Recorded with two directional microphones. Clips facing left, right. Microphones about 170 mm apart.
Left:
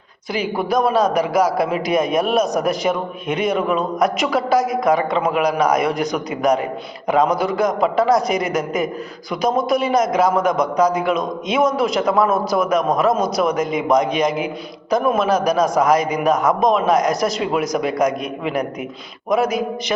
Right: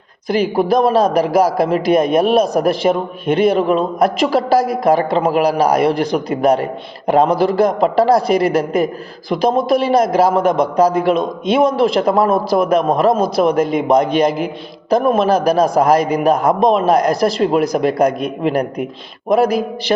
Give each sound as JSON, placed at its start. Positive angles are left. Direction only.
{"t": 0.5, "sound": "a man's voice", "side_deg": -40}